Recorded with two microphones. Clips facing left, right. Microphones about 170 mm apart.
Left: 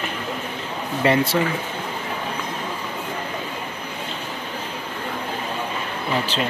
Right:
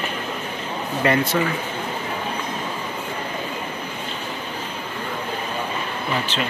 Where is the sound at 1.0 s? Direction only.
25° left (ahead or behind).